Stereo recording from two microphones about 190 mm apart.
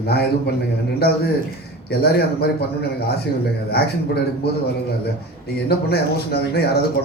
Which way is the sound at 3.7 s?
55° left (ahead or behind).